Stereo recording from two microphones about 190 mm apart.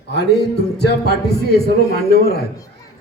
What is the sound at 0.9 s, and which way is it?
Speech, 60° left (ahead or behind).